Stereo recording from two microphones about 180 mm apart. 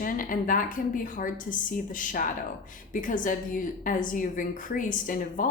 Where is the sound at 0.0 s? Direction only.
50° left (ahead or behind).